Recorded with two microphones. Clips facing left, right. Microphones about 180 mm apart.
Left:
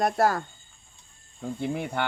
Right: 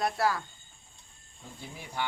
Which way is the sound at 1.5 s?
60° left (ahead or behind).